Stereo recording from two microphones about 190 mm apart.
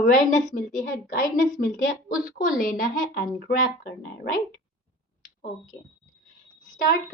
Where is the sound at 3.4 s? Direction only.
65° left (ahead or behind).